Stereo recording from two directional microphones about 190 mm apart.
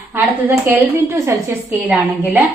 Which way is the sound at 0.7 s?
10° right (ahead or behind).